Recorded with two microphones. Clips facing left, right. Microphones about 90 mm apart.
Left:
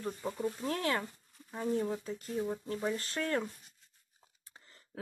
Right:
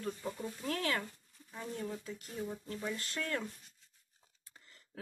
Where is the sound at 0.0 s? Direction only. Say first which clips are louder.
Left 4 dB; 20° left (ahead or behind).